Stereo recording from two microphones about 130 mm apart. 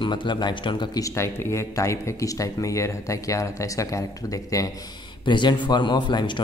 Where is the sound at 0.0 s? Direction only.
35° left (ahead or behind).